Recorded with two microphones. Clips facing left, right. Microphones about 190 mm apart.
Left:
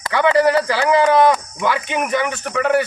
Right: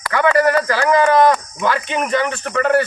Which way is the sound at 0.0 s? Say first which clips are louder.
Even; 20° left (ahead or behind).